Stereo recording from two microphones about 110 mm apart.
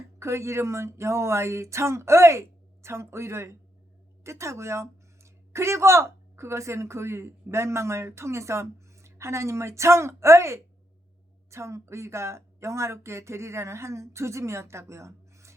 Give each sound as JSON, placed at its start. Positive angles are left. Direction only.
{"t": 0.2, "sound": "speech", "side_deg": -25}